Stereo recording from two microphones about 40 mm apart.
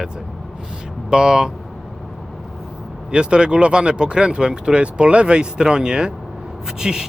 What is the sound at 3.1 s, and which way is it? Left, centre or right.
Speech, right.